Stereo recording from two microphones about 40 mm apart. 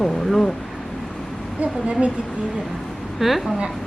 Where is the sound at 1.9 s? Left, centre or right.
Right.